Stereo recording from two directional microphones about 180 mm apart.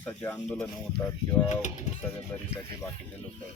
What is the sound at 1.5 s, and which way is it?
Speech, 40° left (ahead or behind).